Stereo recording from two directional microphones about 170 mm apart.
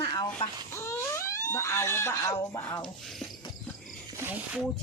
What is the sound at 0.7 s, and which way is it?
Speech, 15° left (ahead or behind).